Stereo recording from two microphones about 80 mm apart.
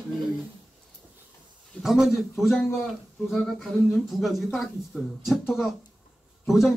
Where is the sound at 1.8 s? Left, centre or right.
Centre.